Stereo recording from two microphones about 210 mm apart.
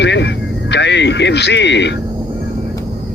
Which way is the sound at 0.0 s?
55° left (ahead or behind).